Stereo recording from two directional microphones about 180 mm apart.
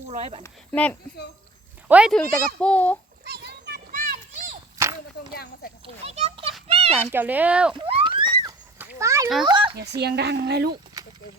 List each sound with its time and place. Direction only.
0.1 s a child's voice: 35° right (ahead or behind)
0.4 s a child's voice: 10° left (ahead or behind)
1.9 s speech: 5° right (ahead or behind)
2.1 s a child's voice: 5° left (ahead or behind)
3.2 s children playing: 60° right (ahead or behind)
5.3 s speech: 55° left (ahead or behind)
5.8 s a child's voice: 35° right (ahead or behind)
6.7 s a sound: 35° right (ahead or behind)
7.1 s speech: 10° right (ahead or behind)
7.8 s a sound: 30° right (ahead or behind)
9.5 s a child's voice: 30° right (ahead or behind)
9.7 s speech: 65° right (ahead or behind)